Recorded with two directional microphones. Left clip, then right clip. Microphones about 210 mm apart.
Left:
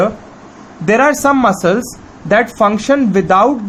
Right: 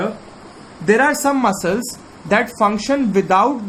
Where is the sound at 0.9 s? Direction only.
45° left (ahead or behind).